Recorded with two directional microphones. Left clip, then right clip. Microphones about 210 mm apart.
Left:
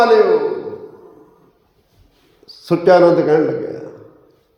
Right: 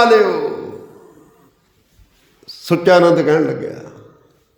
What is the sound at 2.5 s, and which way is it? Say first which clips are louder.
A man's voice: even; 40° right (ahead or behind).